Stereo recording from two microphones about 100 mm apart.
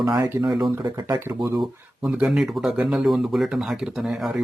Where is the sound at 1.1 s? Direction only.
25° right (ahead or behind).